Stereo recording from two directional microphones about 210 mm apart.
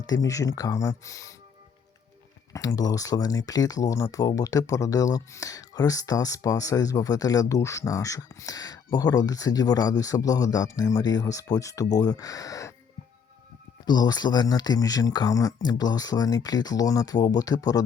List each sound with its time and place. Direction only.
0.0 s speech: 15° left (ahead or behind)
2.5 s speech: 15° left (ahead or behind)
13.8 s speech: 20° left (ahead or behind)